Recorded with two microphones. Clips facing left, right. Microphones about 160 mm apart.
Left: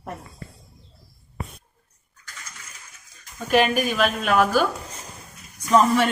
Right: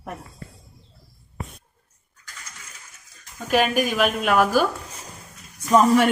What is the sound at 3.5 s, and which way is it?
A woman's voice, 5° right (ahead or behind).